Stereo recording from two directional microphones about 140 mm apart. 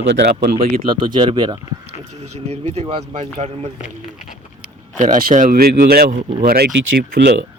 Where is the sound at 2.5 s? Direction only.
45° right (ahead or behind).